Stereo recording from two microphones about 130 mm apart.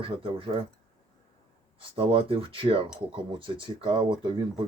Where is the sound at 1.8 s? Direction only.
45° right (ahead or behind).